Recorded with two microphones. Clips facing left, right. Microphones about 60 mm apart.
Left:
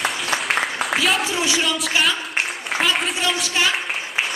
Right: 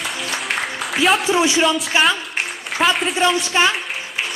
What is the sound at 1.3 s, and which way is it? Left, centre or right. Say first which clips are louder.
Speech: right 6 dB; right.